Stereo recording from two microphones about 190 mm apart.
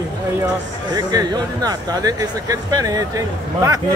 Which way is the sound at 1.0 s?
20° right (ahead or behind).